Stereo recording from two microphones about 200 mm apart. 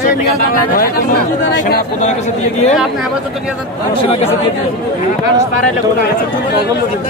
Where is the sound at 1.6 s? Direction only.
40° left (ahead or behind).